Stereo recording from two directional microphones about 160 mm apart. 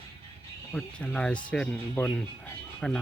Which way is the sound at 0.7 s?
5° left (ahead or behind).